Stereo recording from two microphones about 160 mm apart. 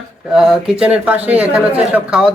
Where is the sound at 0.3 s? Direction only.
5° right (ahead or behind).